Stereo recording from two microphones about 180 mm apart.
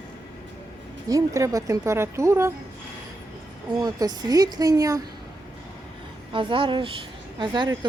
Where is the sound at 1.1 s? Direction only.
20° right (ahead or behind).